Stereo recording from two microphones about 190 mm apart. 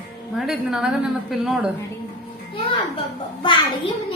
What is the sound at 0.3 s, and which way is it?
A woman's voice, centre (ahead or behind).